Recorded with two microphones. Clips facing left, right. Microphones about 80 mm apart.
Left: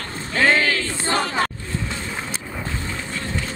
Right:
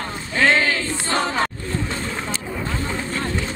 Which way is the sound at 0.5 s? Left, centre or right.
Right.